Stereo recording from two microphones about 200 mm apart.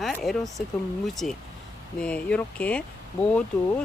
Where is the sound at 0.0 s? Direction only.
Centre (ahead or behind).